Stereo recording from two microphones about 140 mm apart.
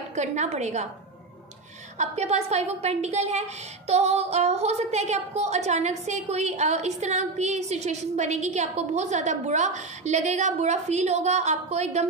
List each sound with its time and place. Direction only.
0.1 s a woman's voice: 55° right (ahead or behind)
2.0 s a woman's voice: 50° right (ahead or behind)